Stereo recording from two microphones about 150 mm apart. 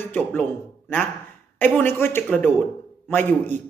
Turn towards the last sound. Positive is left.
turn(degrees=10)  # may be behind; listen again after turning